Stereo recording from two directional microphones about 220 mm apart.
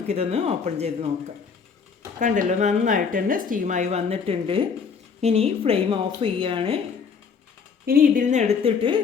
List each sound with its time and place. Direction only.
0.1 s speech: 30° right (ahead or behind)
2.1 s speech: 35° right (ahead or behind)
7.9 s speech: 40° right (ahead or behind); by 9.0 s 25° right (ahead or behind)